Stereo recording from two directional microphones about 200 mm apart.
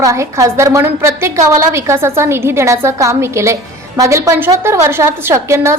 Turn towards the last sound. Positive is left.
turn(degrees=-15)  # may be behind; listen again after turning